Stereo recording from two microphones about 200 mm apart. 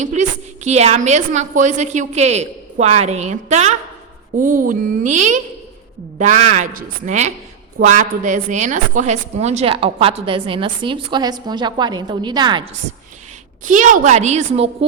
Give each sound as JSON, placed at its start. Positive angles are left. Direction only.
{"t": 0.0, "sound": "a woman's voice", "side_deg": -35}
{"t": 13.7, "sound": "a woman's voice", "side_deg": -40}